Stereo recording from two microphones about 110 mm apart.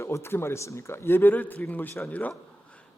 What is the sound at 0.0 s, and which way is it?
A man's voice, 25° left (ahead or behind).